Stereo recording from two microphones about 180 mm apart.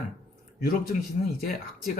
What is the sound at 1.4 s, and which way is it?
Speech, 50° left (ahead or behind).